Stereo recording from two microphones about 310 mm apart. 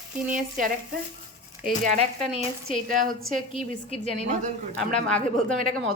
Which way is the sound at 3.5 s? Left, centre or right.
Centre.